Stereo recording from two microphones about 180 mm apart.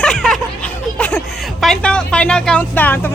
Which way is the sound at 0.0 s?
5° left (ahead or behind).